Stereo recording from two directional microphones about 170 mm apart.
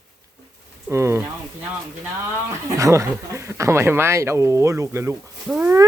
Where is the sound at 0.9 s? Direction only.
15° right (ahead or behind).